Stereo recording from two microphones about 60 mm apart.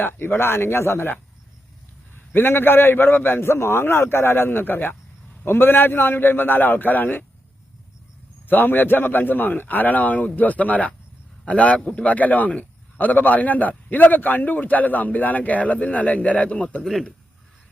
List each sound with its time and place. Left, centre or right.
0.0 s a man's voice: left
2.1 s a man's voice: left
8.4 s a man's voice: left
16.8 s a man's voice: centre